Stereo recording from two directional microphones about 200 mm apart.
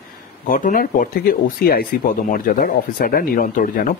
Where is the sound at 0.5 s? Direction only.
40° left (ahead or behind).